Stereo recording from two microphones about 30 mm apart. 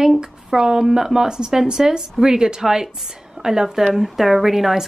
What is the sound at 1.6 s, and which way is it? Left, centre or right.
A woman's voice, right.